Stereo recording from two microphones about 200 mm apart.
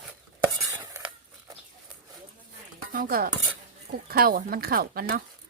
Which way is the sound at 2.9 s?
45° right (ahead or behind).